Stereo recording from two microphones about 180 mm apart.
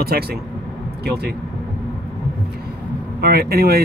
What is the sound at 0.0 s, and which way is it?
Speech, 60° right (ahead or behind).